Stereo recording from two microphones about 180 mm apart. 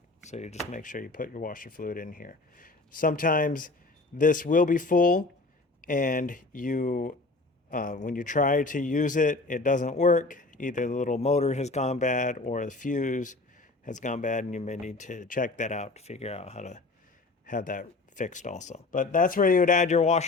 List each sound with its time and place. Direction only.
0.3 s a man's voice: 40° left (ahead or behind)